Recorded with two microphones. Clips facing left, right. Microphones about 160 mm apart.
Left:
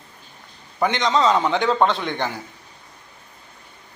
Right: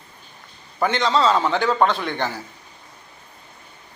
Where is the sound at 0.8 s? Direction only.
20° left (ahead or behind).